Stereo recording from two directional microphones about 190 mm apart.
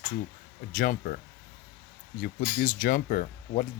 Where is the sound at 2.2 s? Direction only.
45° left (ahead or behind).